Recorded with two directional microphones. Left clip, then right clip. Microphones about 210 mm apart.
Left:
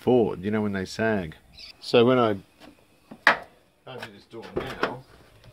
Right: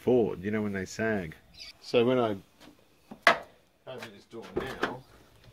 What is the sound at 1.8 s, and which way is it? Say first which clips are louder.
Speech: left 6 dB; 35° left (ahead or behind).